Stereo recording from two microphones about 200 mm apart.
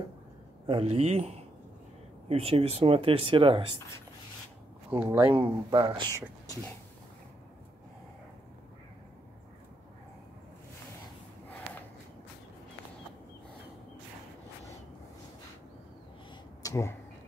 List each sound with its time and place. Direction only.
0.7 s speech: 30° right (ahead or behind)
5.1 s speech: 10° right (ahead or behind)
5.7 s speech: 25° right (ahead or behind)
16.6 s a sound: 15° left (ahead or behind)